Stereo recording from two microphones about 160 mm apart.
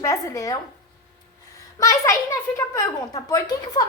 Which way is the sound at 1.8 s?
20° left (ahead or behind).